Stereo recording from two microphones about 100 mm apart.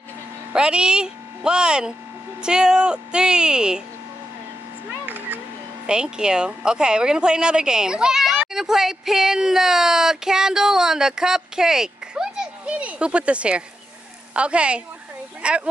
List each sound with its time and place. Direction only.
0.5 s speech: 10° right (ahead or behind)
5.0 s a sound: 15° right (ahead or behind)
5.9 s speech: 10° right (ahead or behind)